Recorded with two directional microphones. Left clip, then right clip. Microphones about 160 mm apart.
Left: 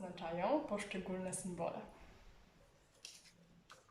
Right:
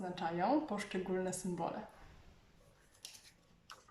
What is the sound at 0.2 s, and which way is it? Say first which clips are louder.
Speech: right 3 dB; 15° left (ahead or behind).